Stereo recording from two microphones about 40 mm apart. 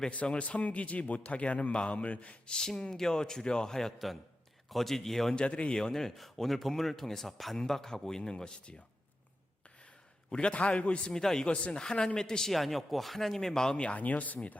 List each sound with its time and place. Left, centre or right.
0.1 s speech: left
2.5 s speech: centre
3.9 s a man's voice: centre
5.3 s a man's voice: left
5.7 s speech: centre
10.3 s a man's voice: left
11.1 s speech: centre
11.4 s a man's voice: left
12.5 s speech: centre; by 13.9 s left
13.9 s speech: left